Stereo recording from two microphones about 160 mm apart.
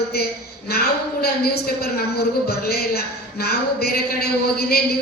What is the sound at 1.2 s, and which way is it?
A man's voice, 75° left (ahead or behind).